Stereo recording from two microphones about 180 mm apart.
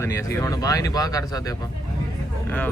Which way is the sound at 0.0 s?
15° left (ahead or behind).